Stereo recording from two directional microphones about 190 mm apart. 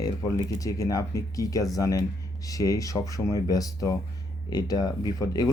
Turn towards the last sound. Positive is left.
turn(degrees=20)  # may be behind; listen again after turning